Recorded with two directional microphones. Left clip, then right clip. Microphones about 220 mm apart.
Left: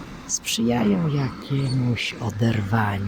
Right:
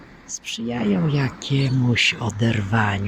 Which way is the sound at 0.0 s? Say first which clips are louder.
Left 6 dB; 45° left (ahead or behind).